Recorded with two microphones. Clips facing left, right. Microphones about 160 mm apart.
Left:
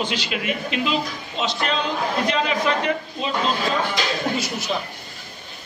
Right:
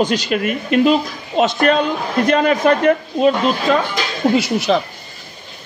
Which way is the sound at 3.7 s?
70° right (ahead or behind).